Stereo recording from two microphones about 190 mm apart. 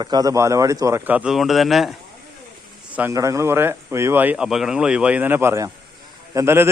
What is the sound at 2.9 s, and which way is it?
A man's voice, 15° right (ahead or behind).